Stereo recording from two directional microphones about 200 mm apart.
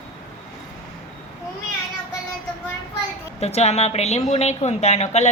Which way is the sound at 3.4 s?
30° left (ahead or behind).